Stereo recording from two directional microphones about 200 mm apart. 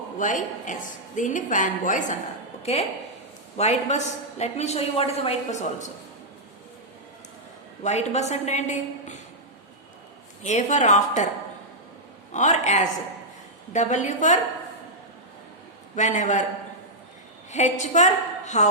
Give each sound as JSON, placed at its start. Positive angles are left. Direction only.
{"t": 0.2, "sound": "a woman's voice", "side_deg": 40}
{"t": 7.9, "sound": "a woman's voice", "side_deg": 35}
{"t": 10.4, "sound": "a woman's voice", "side_deg": 35}
{"t": 12.3, "sound": "a woman's voice", "side_deg": 35}
{"t": 16.0, "sound": "a woman's voice", "side_deg": 40}
{"t": 17.5, "sound": "a woman's voice", "side_deg": 35}